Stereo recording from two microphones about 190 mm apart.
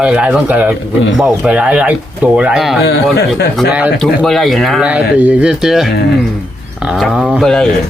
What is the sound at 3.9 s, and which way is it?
Speech, 5° left (ahead or behind).